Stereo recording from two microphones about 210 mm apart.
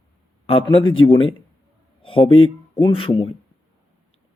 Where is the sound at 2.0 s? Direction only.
25° left (ahead or behind).